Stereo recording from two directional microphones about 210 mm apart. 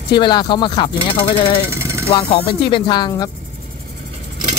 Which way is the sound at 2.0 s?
25° left (ahead or behind).